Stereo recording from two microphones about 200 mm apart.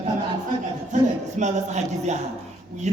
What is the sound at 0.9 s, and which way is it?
A man's voice, 40° right (ahead or behind).